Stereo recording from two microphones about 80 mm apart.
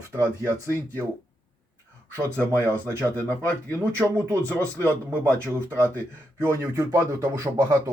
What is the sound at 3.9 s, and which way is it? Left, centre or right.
Speech, right.